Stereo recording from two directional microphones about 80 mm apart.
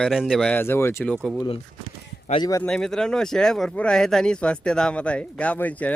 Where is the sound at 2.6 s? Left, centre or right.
Centre.